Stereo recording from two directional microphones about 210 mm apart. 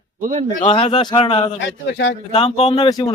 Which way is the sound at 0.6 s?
25° left (ahead or behind).